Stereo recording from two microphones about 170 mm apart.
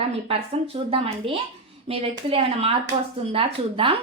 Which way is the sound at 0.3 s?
35° right (ahead or behind).